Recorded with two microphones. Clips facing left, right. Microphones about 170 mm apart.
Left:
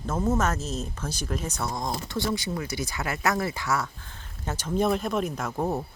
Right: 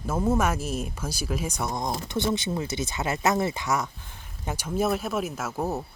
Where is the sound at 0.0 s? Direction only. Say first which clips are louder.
Right 1 dB; 10° right (ahead or behind).